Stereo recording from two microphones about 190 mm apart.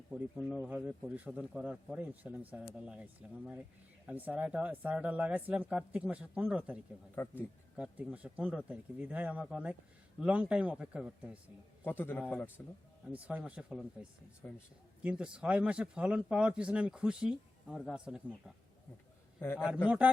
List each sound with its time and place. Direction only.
0.1 s speech: centre (ahead or behind)
7.2 s a man's voice: 10° left (ahead or behind)
7.8 s speech: 5° right (ahead or behind)
11.8 s a man's voice: 10° left (ahead or behind)
13.1 s speech: 5° right (ahead or behind)
14.4 s a man's voice: 10° left (ahead or behind)
15.0 s speech: 5° right (ahead or behind)
19.4 s a man's voice: 10° left (ahead or behind)
19.6 s speech: 5° right (ahead or behind)